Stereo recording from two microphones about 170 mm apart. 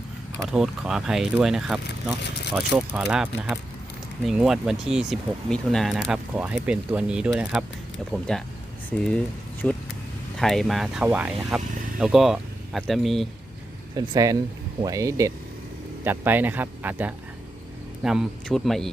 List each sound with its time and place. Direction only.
0.4 s speech: centre (ahead or behind)
13.9 s speech: 20° right (ahead or behind); by 18.9 s centre (ahead or behind)